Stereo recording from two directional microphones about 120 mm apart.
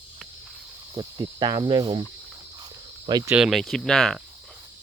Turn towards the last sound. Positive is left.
turn(degrees=5)  # may be behind; listen again after turning